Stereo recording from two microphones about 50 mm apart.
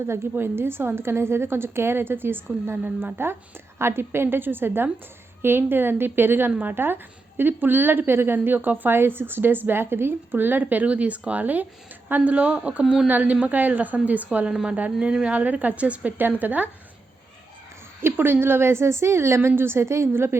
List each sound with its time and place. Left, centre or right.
0.1 s a woman's voice: right
3.8 s a woman's voice: right
9.0 s a woman's voice: right
14.5 s speech: centre
15.3 s a woman's voice: right
18.0 s a woman's voice: right
19.4 s a woman's voice: right